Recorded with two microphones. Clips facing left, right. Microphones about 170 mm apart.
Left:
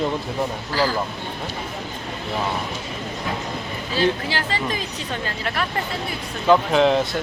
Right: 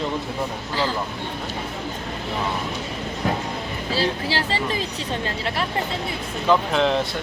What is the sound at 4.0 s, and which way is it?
Speech, 30° right (ahead or behind).